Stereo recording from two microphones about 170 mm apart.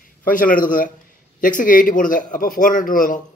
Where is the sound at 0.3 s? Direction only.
55° left (ahead or behind).